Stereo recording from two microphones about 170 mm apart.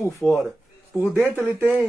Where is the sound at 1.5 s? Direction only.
10° right (ahead or behind).